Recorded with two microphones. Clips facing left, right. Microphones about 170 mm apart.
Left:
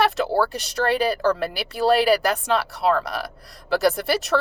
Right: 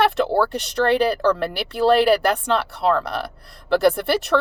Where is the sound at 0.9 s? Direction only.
55° right (ahead or behind).